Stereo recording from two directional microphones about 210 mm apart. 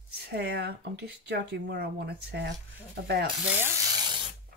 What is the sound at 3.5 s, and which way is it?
Sizzle, 15° right (ahead or behind).